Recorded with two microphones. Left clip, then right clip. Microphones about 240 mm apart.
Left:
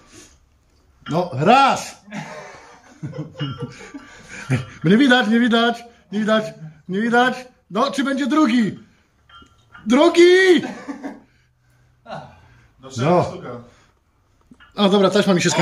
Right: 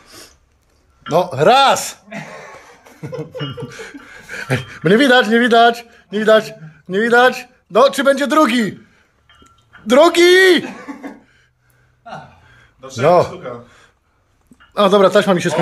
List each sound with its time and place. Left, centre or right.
1.1 s a man's voice: right
3.6 s a man's voice: right
9.8 s a man's voice: right
14.7 s speech: centre